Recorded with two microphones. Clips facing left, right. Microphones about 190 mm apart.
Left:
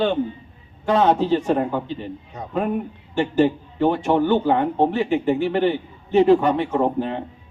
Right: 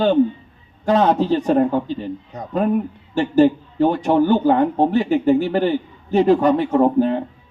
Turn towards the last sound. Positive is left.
turn(degrees=-40)  # may be behind; listen again after turning